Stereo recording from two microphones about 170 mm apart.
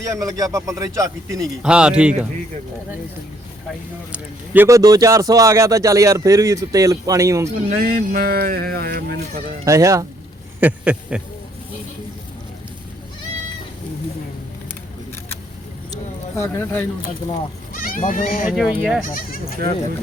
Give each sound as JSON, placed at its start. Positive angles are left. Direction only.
{"t": 0.0, "sound": "speech", "side_deg": -20}
{"t": 1.6, "sound": "speech", "side_deg": -5}
{"t": 4.5, "sound": "speech", "side_deg": -15}
{"t": 7.7, "sound": "speech", "side_deg": -60}
{"t": 9.6, "sound": "speech", "side_deg": -20}
{"t": 10.6, "sound": "a sound", "side_deg": -10}
{"t": 15.9, "sound": "a sound", "side_deg": 15}
{"t": 17.7, "sound": "speech", "side_deg": 55}
{"t": 18.5, "sound": "speech", "side_deg": -5}
{"t": 19.0, "sound": "speech", "side_deg": 55}